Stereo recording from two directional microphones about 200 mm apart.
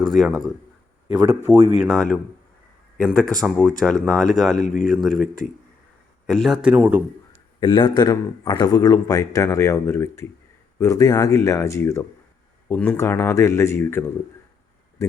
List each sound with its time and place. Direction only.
0.1 s speech: centre (ahead or behind)
1.8 s speech: 5° left (ahead or behind)
4.6 s a man's voice: 40° left (ahead or behind)
4.9 s speech: centre (ahead or behind)
7.6 s a man's voice: 25° left (ahead or behind)